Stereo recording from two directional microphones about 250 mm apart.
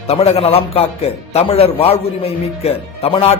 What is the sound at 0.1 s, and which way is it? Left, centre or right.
A man's voice, left.